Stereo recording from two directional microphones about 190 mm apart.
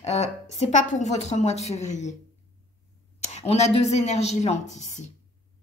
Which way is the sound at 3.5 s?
35° left (ahead or behind).